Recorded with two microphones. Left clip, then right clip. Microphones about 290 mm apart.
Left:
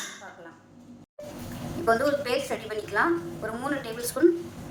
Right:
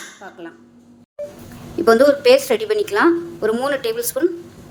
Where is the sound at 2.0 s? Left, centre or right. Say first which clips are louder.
Right 14 dB; right.